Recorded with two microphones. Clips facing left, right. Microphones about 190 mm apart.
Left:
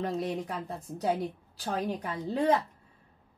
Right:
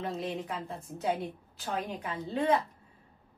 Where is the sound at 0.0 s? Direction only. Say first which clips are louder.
Left 3 dB; 40° left (ahead or behind).